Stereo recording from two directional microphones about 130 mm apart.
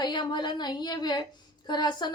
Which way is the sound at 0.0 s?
35° left (ahead or behind).